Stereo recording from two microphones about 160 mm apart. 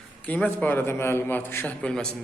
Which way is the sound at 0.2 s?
10° left (ahead or behind).